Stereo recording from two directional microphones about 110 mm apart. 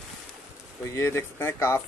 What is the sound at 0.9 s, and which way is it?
Speech, 25° left (ahead or behind).